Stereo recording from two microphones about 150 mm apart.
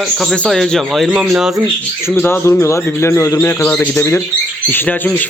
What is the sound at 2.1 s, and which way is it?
Speech, 15° left (ahead or behind).